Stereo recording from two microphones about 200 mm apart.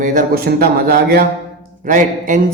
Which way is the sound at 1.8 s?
40° right (ahead or behind).